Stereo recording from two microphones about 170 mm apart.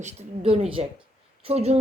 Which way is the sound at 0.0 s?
35° right (ahead or behind).